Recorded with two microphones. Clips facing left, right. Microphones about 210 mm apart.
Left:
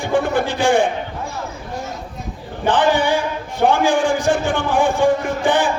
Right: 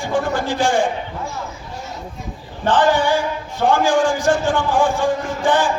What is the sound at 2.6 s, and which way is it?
A man's voice, 60° left (ahead or behind).